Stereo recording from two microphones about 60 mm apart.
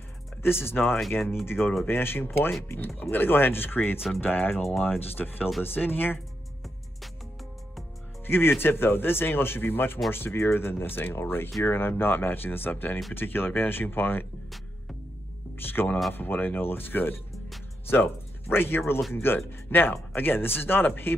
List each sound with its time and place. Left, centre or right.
0.4 s speech: left
8.3 s speech: left
15.5 s music: left
16.1 s speech: left
18.5 s speech: left